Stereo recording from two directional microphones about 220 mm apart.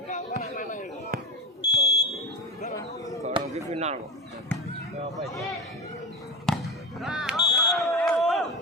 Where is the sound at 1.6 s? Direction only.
20° left (ahead or behind).